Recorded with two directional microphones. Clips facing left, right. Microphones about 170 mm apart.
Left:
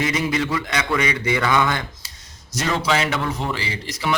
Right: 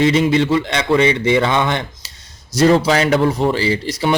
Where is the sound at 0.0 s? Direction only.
30° right (ahead or behind).